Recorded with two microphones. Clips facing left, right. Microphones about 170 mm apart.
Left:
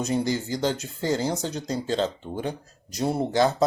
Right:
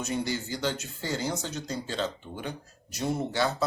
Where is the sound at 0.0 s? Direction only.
35° left (ahead or behind).